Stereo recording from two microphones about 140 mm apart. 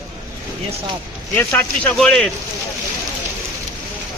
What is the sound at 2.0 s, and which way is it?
Speech, 5° left (ahead or behind).